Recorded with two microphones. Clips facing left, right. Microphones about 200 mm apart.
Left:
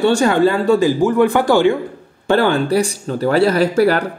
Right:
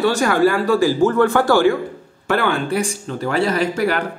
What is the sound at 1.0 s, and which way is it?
Speech, 15° left (ahead or behind).